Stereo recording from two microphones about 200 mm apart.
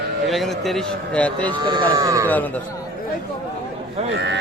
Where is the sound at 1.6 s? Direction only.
20° right (ahead or behind).